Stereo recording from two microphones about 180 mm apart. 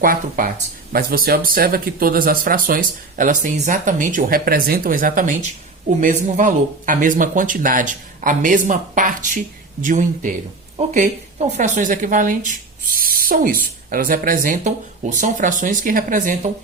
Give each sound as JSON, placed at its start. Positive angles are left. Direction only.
{"t": 0.0, "sound": "speech", "side_deg": -50}